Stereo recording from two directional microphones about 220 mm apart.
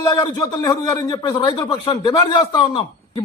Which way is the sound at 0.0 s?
15° left (ahead or behind).